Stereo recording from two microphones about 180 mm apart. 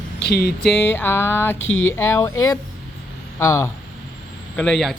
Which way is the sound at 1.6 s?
90° left.